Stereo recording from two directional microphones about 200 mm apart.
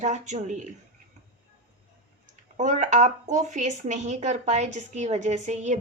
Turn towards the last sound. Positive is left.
turn(degrees=-35)  # may be behind; listen again after turning